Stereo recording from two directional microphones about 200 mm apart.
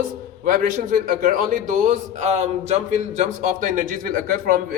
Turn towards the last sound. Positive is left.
turn(degrees=-45)  # may be behind; listen again after turning